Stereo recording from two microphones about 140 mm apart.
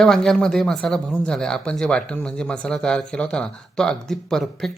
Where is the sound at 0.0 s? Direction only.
5° left (ahead or behind).